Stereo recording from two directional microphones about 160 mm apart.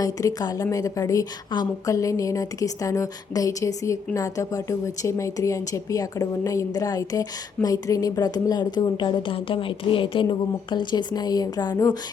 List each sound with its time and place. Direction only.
0.0 s a woman's voice: 20° left (ahead or behind)